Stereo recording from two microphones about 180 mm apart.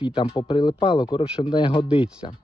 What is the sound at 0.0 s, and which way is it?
Speech, 25° left (ahead or behind).